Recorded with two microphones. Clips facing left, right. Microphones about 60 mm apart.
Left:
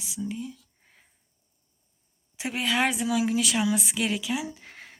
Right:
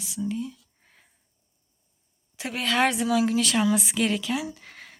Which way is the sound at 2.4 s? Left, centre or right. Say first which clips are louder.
Even; centre.